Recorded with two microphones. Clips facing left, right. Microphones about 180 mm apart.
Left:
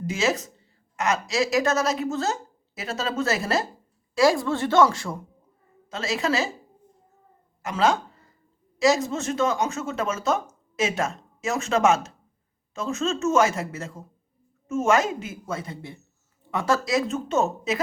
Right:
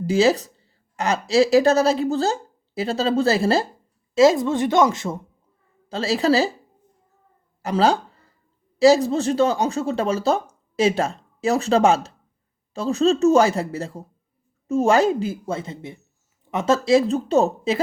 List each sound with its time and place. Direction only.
0.0 s a woman's voice: 35° right (ahead or behind)
5.9 s speech: 35° right (ahead or behind)
7.6 s speech: 35° right (ahead or behind)